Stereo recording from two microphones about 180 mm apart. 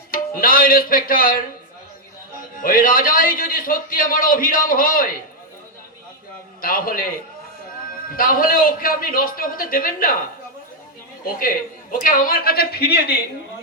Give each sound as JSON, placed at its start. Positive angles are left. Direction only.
{"t": 0.1, "sound": "speech", "side_deg": 50}
{"t": 2.6, "sound": "a man's voice", "side_deg": 50}
{"t": 6.6, "sound": "a man's voice", "side_deg": 55}
{"t": 8.1, "sound": "a man's voice", "side_deg": 50}
{"t": 11.3, "sound": "a man's voice", "side_deg": 50}